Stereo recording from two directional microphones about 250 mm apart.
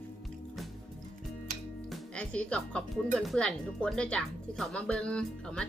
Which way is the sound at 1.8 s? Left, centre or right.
Centre.